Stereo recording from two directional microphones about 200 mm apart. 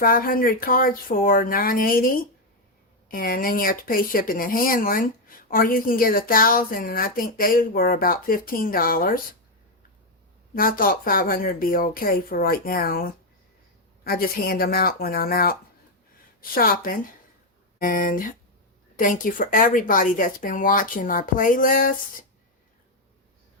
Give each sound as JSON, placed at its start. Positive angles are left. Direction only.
{"t": 0.0, "sound": "speech", "side_deg": 45}
{"t": 10.5, "sound": "speech", "side_deg": 45}